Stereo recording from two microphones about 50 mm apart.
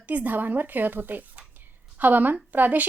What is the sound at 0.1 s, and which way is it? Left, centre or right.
A woman's voice, right.